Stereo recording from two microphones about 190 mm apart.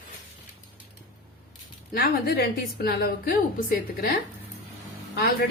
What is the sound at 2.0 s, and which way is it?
A woman's voice, 55° left (ahead or behind).